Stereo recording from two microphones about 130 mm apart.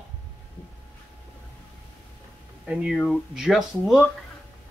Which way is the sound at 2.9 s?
5° left (ahead or behind).